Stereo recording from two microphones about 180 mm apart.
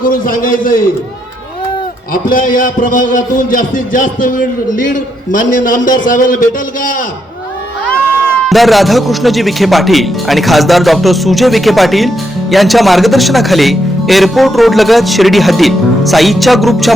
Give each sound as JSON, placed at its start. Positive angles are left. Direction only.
{"t": 0.0, "sound": "a man's voice", "side_deg": 50}
{"t": 2.3, "sound": "a man's voice", "side_deg": 50}
{"t": 8.4, "sound": "speech", "side_deg": 0}